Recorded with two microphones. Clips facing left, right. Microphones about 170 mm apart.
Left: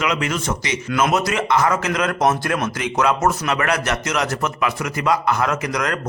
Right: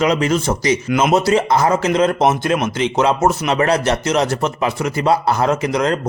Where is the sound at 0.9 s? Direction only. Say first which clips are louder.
Right 4 dB; 20° right (ahead or behind).